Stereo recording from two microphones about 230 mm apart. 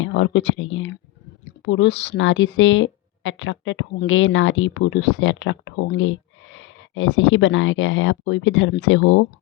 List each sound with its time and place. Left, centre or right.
0.0 s speech: left